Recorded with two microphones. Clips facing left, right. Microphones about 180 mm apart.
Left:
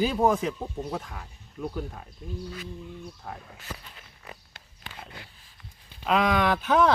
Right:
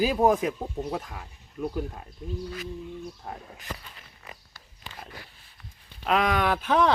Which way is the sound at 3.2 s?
20° right (ahead or behind).